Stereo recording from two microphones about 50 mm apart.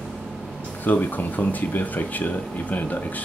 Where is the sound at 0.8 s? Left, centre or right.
Left.